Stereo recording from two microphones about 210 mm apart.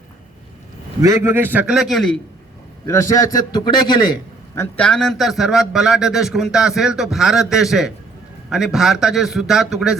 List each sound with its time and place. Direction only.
1.0 s a man's voice: 15° right (ahead or behind)
2.8 s a man's voice: 15° left (ahead or behind)
4.5 s a man's voice: 10° left (ahead or behind)